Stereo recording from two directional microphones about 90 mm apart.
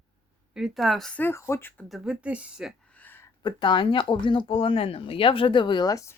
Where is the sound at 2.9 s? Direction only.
20° left (ahead or behind).